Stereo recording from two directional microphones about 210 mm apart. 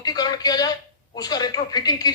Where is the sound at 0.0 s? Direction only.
20° left (ahead or behind).